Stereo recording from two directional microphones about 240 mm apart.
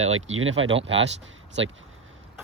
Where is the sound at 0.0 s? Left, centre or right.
Right.